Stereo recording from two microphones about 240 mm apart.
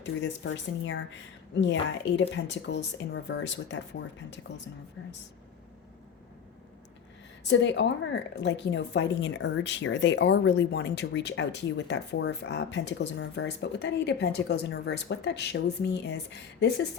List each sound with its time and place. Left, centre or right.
0.0 s a woman's voice: left
7.4 s a woman's voice: left